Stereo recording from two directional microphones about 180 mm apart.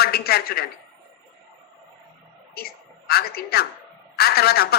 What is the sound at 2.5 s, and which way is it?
A woman's voice, 60° left (ahead or behind).